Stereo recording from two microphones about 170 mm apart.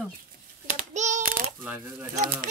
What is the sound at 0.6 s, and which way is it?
Child singing, 45° right (ahead or behind).